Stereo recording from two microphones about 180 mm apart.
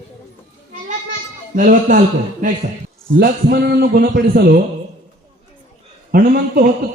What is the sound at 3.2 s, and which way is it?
A man's voice, 55° right (ahead or behind).